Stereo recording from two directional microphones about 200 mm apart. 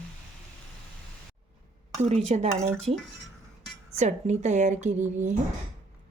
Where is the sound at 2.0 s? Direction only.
35° right (ahead or behind).